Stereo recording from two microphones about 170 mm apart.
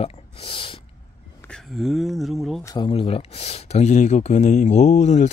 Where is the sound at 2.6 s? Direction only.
25° left (ahead or behind).